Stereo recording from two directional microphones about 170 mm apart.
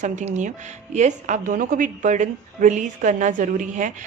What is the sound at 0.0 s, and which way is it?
A woman's voice, 45° right (ahead or behind).